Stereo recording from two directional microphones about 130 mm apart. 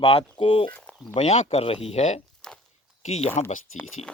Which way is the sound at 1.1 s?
60° left (ahead or behind).